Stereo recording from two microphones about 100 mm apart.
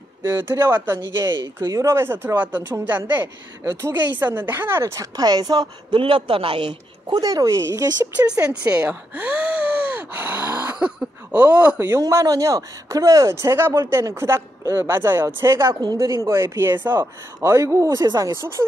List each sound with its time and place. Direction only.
0.2 s a man's voice: 25° right (ahead or behind)
1.3 s a man's voice: 40° right (ahead or behind)
8.3 s a man's voice: 10° right (ahead or behind); by 18.5 s 30° right (ahead or behind)